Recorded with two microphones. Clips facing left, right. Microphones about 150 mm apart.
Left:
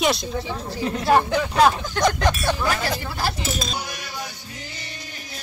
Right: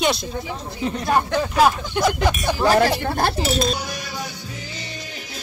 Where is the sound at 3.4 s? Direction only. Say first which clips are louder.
Right 7 dB; 65° right (ahead or behind).